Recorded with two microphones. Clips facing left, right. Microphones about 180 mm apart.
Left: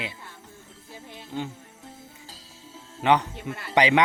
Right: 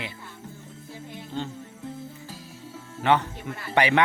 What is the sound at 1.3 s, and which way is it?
Speech, 10° left (ahead or behind).